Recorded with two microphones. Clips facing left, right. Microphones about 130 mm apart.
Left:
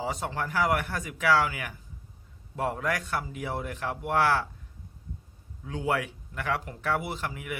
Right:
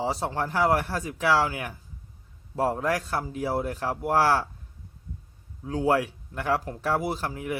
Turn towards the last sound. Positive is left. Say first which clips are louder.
# right 5 dB
turn(degrees=-35)  # may be behind; listen again after turning